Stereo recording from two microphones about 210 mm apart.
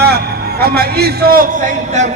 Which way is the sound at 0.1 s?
50° right (ahead or behind).